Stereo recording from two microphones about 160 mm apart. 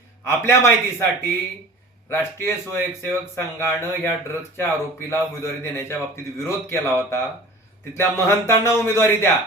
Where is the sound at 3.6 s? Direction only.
15° left (ahead or behind).